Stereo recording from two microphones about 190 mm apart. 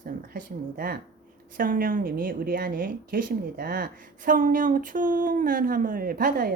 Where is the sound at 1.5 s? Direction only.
45° right (ahead or behind).